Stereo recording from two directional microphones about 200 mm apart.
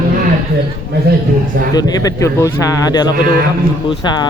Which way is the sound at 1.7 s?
15° left (ahead or behind).